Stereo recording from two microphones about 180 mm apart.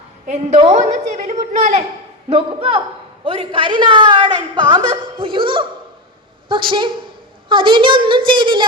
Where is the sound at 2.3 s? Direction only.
30° right (ahead or behind).